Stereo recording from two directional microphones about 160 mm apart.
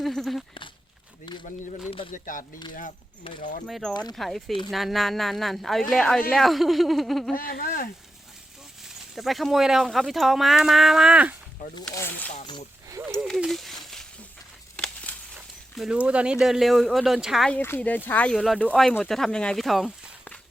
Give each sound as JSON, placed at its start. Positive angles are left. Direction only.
{"t": 0.0, "sound": "speech", "side_deg": 0}
{"t": 1.3, "sound": "a sound", "side_deg": 30}
{"t": 2.1, "sound": "speech", "side_deg": 55}
{"t": 3.3, "sound": "speech", "side_deg": 35}
{"t": 3.7, "sound": "speech", "side_deg": 5}
{"t": 7.3, "sound": "speech", "side_deg": 65}
{"t": 8.8, "sound": "speech", "side_deg": 0}
{"t": 11.6, "sound": "speech", "side_deg": 55}
{"t": 11.9, "sound": "speech", "side_deg": 10}
{"t": 12.9, "sound": "speech", "side_deg": -15}
{"t": 13.2, "sound": "a sound", "side_deg": 0}
{"t": 15.7, "sound": "speech", "side_deg": -5}
{"t": 17.6, "sound": "speech", "side_deg": 10}